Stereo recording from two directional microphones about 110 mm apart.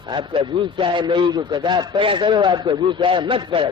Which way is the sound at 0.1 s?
45° right (ahead or behind).